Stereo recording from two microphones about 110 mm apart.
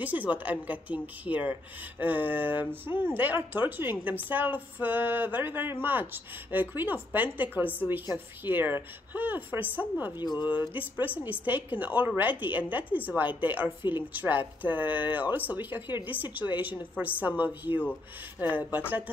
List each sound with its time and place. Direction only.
0.0 s a woman's voice: 15° right (ahead or behind)
10.1 s speech: 40° left (ahead or behind)
10.7 s a woman's voice: 15° right (ahead or behind)